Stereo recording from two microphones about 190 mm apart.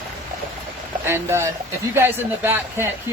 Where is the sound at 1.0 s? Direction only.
10° right (ahead or behind).